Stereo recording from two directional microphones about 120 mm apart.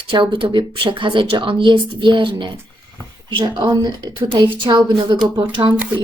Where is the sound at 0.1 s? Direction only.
40° right (ahead or behind).